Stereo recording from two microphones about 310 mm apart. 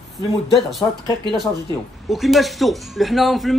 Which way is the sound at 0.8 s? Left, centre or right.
Centre.